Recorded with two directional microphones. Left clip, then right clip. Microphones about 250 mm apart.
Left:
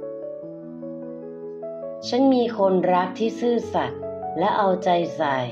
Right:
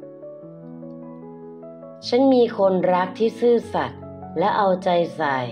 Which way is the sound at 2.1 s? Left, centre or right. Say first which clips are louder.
Right 3 dB; centre.